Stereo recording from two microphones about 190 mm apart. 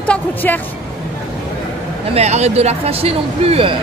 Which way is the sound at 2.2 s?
35° right (ahead or behind).